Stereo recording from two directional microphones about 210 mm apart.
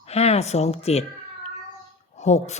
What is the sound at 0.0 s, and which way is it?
Speech, 30° left (ahead or behind).